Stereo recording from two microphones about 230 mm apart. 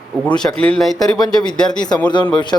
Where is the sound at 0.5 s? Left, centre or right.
Right.